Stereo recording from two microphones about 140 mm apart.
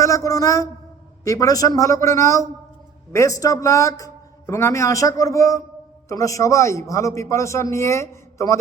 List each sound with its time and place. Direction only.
0.0 s a man's voice: 20° left (ahead or behind)